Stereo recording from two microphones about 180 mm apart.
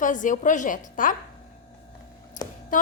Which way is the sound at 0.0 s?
45° left (ahead or behind).